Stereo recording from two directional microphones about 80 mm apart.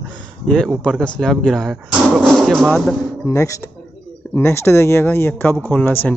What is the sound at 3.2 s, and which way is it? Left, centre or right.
Speech, left.